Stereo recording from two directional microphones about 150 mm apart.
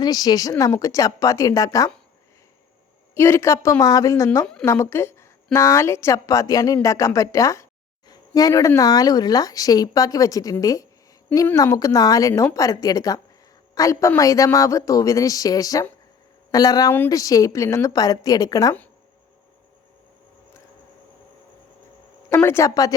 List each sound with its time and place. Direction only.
0.0 s a woman's voice: 25° left (ahead or behind)
3.2 s a woman's voice: 15° left (ahead or behind)
12.3 s a woman's voice: 10° left (ahead or behind)
12.5 s a woman's voice: 25° left (ahead or behind)
22.4 s a woman's voice: 15° left (ahead or behind)